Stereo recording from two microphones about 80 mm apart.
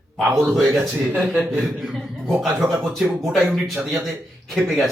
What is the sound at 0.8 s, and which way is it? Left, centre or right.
Speech, right.